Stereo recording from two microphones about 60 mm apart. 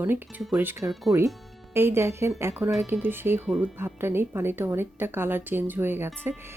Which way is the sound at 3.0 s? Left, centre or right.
Right.